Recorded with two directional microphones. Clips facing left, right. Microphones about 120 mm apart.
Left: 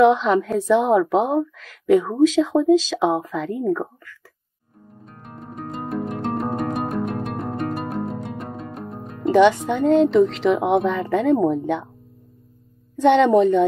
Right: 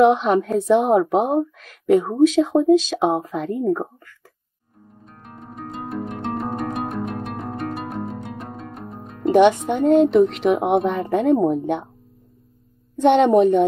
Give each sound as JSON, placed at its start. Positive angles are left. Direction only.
{"t": 0.0, "sound": "a woman's voice", "side_deg": -20}
{"t": 3.8, "sound": "a sound", "side_deg": -20}
{"t": 5.0, "sound": "music", "side_deg": 0}
{"t": 9.3, "sound": "speech", "side_deg": -15}
{"t": 12.9, "sound": "speech", "side_deg": -15}